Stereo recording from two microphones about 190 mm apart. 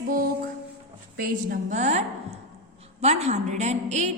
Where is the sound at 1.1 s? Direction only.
50° right (ahead or behind).